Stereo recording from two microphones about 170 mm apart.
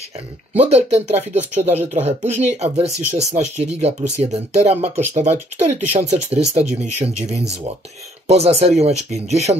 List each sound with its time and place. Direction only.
0.5 s speech: 40° right (ahead or behind)